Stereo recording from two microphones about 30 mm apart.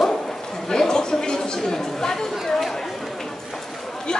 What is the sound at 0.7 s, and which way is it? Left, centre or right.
Chatter, left.